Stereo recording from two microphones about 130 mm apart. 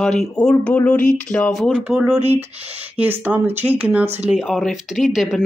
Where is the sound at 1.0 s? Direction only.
75° left (ahead or behind).